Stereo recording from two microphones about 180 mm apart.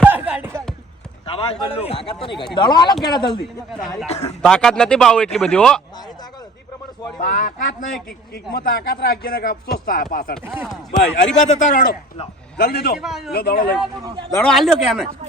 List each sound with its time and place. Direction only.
0.0 s a sound: 10° right (ahead or behind)
1.3 s a man's voice: 30° left (ahead or behind)
3.4 s speech: centre (ahead or behind)
4.0 s speech: 35° left (ahead or behind)
4.4 s speech: 5° left (ahead or behind)
7.2 s speech: 45° left (ahead or behind)
8.5 s speech: 60° left (ahead or behind)
11.3 s speech: 40° left (ahead or behind)
12.5 s speech: 65° left (ahead or behind)
13.0 s speech: centre (ahead or behind)
13.3 s speech: 60° left (ahead or behind)
14.4 s speech: centre (ahead or behind)